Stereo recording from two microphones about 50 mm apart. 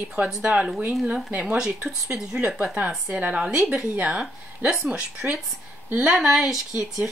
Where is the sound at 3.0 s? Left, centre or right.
Right.